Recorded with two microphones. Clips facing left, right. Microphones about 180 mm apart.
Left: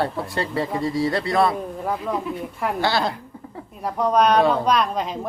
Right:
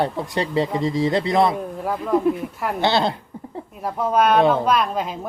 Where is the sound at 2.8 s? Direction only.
25° right (ahead or behind).